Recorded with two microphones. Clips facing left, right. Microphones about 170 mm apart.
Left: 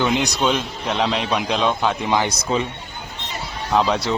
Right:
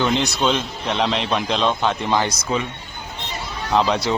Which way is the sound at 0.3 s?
5° left (ahead or behind).